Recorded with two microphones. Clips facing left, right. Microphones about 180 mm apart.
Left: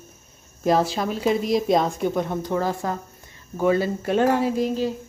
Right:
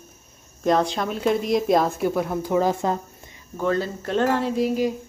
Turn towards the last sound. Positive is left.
turn(degrees=-15)  # may be behind; listen again after turning